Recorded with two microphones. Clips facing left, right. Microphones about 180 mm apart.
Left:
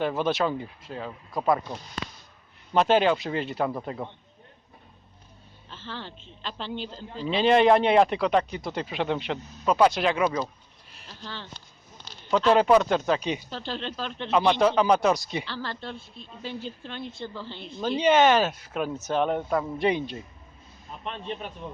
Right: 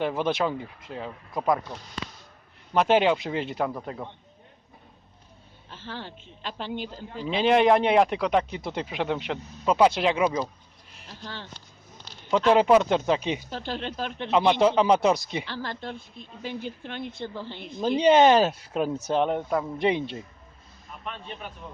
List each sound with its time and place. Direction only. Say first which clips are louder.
0.0 s a woman's voice: even; 15° right (ahead or behind)
1.3 s speech: left 1 dB; centre (ahead or behind)
2.7 s a woman's voice: even; 15° right (ahead or behind)
3.8 s a man's voice: left 2 dB; 10° left (ahead or behind)
5.7 s a woman's voice: right 1 dB; 10° right (ahead or behind)
8.9 s a woman's voice: left 1 dB; 10° right (ahead or behind)
9.6 s a woman's voice: right 1 dB; 20° right (ahead or behind)
12.3 s a woman's voice: right 1 dB; 15° right (ahead or behind)
18.0 s a man's voice: right 2 dB; 35° right (ahead or behind)
21.0 s a man's voice: left 4 dB; 25° left (ahead or behind)